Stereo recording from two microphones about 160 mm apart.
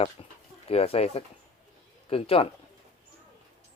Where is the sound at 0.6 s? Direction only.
40° left (ahead or behind).